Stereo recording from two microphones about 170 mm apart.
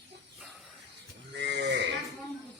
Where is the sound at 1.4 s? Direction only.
85° right.